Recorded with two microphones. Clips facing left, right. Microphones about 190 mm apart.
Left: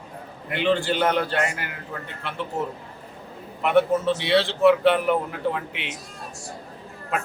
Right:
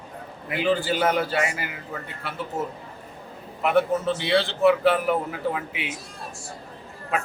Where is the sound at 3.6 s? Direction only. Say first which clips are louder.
Left 2 dB; centre (ahead or behind).